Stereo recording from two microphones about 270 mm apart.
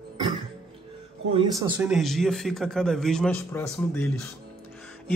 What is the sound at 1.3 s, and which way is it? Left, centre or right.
Speech, centre.